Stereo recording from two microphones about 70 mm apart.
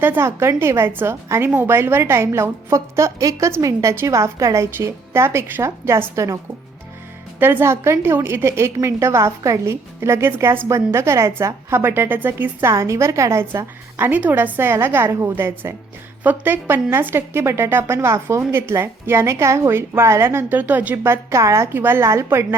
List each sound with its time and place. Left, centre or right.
0.0 s a woman's voice: right
7.3 s speech: right
7.6 s a woman's voice: right
12.7 s a woman's voice: right
13.5 s a woman's voice: right
20.6 s a woman's voice: right